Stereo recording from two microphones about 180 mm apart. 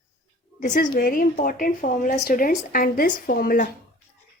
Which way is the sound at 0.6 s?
50° left (ahead or behind).